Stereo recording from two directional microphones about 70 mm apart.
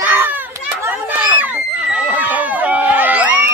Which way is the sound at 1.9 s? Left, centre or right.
Right.